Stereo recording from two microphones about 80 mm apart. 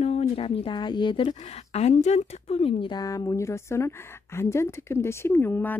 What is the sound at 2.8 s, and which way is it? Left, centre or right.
Speech, left.